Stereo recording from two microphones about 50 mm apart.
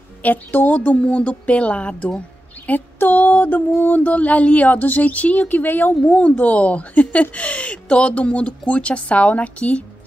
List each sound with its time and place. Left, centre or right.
0.2 s speech: left
6.0 s speech: left